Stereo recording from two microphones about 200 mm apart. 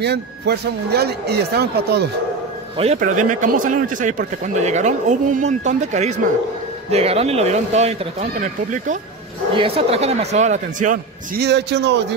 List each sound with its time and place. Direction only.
0.0 s speech: 55° right (ahead or behind)
2.8 s speech: 35° right (ahead or behind)
9.6 s speech: 30° right (ahead or behind)
11.4 s a man's voice: 55° right (ahead or behind)